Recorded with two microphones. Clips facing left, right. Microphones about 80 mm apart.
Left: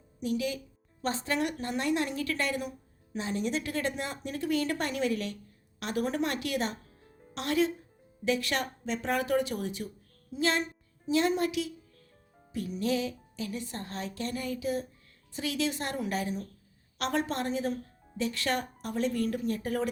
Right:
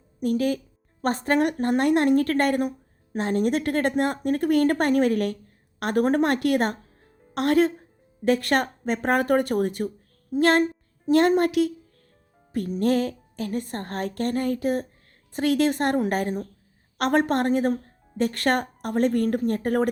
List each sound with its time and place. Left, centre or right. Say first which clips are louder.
0.2 s a woman's voice: right 8 dB; right